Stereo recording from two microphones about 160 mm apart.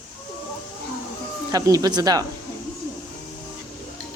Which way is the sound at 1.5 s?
20° right (ahead or behind).